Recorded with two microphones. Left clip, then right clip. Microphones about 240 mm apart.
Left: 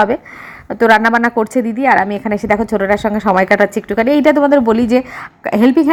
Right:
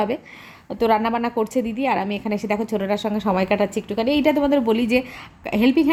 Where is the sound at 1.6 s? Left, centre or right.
Left.